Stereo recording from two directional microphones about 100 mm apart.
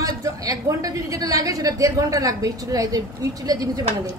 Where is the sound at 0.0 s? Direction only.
35° right (ahead or behind).